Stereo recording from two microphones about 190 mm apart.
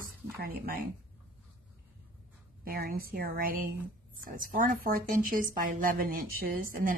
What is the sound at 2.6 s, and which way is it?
A woman's voice, 50° right (ahead or behind).